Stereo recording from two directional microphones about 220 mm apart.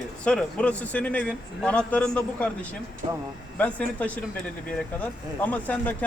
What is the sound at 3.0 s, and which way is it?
Speech, 30° right (ahead or behind).